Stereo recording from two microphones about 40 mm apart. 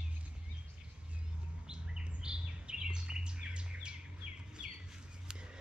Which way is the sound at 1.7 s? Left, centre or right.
Right.